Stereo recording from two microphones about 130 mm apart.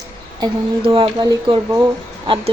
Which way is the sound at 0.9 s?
40° right (ahead or behind).